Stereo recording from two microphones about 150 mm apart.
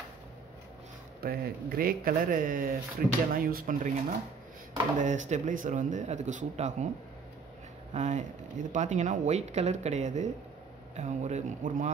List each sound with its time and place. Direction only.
1.2 s speech: 90° right; by 3.1 s 70° right (ahead or behind)
3.3 s speech: 80° right
4.9 s speech: 55° right (ahead or behind)
7.9 s speech: 55° right (ahead or behind)